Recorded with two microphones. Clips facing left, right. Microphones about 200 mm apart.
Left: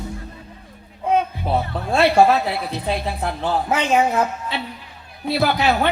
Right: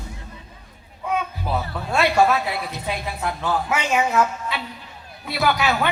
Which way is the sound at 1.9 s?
30° left (ahead or behind).